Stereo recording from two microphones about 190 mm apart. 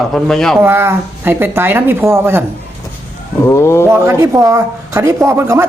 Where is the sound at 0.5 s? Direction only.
10° right (ahead or behind).